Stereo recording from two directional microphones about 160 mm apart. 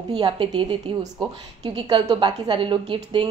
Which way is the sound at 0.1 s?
35° right (ahead or behind).